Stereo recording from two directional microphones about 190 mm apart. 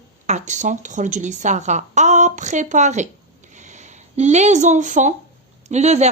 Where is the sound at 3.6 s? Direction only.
40° right (ahead or behind).